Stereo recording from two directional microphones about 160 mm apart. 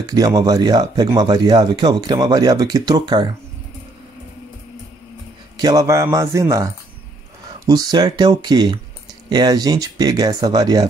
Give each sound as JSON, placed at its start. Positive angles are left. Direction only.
{"t": 0.0, "sound": "speech", "side_deg": -25}
{"t": 5.6, "sound": "speech", "side_deg": -20}